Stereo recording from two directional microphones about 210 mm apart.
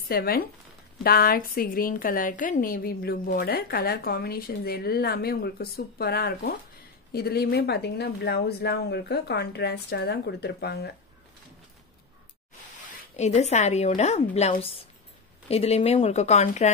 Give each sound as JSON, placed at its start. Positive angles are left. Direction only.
{"t": 0.1, "sound": "a woman's voice", "side_deg": 45}
{"t": 13.1, "sound": "a woman's voice", "side_deg": 30}